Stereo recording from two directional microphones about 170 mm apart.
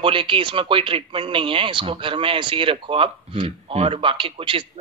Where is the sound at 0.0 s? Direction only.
30° right (ahead or behind).